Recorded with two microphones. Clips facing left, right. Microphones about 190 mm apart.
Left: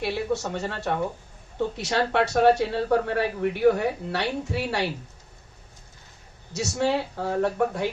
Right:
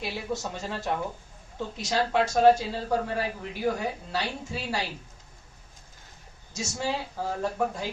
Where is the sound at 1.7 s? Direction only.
65° left (ahead or behind).